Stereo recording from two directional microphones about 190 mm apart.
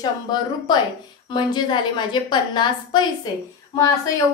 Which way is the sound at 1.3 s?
25° left (ahead or behind).